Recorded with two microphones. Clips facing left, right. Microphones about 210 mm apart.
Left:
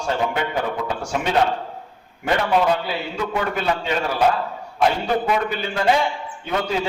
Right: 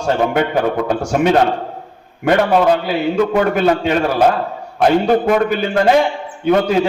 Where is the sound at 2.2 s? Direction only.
55° right (ahead or behind).